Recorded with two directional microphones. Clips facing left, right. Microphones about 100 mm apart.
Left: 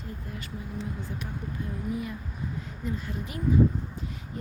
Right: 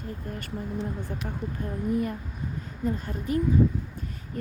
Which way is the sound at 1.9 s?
50° right (ahead or behind).